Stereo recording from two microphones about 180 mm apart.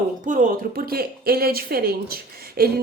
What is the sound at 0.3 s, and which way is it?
Speech, 45° right (ahead or behind).